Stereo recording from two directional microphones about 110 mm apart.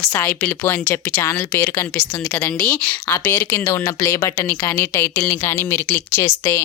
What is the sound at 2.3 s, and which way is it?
Speech, 10° left (ahead or behind).